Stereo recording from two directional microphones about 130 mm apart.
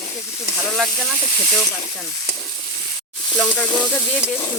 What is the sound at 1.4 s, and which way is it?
Speech, 10° left (ahead or behind).